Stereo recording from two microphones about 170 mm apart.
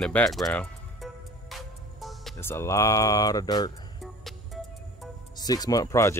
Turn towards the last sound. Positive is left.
turn(degrees=15)  # may be behind; listen again after turning